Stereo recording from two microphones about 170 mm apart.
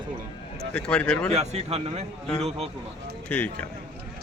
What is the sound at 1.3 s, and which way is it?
Speech, 40° right (ahead or behind).